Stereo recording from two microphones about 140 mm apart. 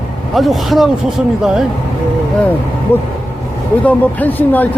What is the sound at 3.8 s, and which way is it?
Speech, 10° left (ahead or behind).